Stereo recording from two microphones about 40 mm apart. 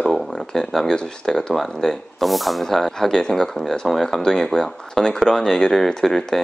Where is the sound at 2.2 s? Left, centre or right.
Centre.